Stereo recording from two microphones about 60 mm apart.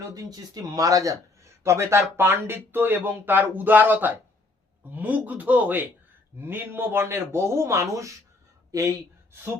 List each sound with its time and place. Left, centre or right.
0.1 s speech: right
1.6 s a man's voice: right
2.1 s a man's voice: right